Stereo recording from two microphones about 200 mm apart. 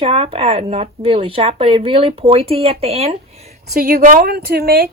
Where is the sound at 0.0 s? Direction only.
30° right (ahead or behind).